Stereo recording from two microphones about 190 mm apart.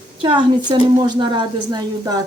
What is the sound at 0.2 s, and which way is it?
A woman's voice, 25° right (ahead or behind).